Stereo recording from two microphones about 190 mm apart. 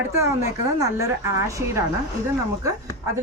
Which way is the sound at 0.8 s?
15° right (ahead or behind).